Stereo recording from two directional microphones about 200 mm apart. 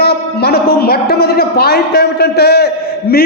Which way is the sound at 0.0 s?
50° left (ahead or behind).